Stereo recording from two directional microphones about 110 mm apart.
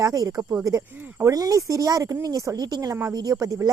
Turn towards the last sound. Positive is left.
turn(degrees=-30)  # may be behind; listen again after turning